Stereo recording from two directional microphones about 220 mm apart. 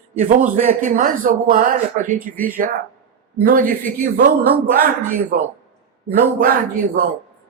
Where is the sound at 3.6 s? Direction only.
10° left (ahead or behind).